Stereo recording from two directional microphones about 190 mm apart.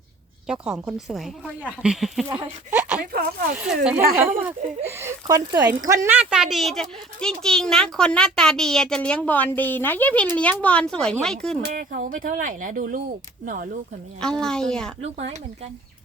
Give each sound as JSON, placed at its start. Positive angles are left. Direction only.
{"t": 0.4, "sound": "speech", "side_deg": -5}
{"t": 3.0, "sound": "speech", "side_deg": -50}
{"t": 4.2, "sound": "speech", "side_deg": -10}
{"t": 11.6, "sound": "speech", "side_deg": -50}
{"t": 14.2, "sound": "speech", "side_deg": 5}